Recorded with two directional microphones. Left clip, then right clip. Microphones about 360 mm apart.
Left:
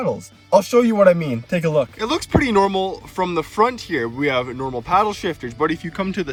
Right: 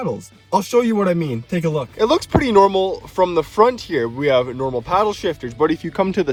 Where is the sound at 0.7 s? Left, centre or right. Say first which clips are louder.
Left 2 dB; centre.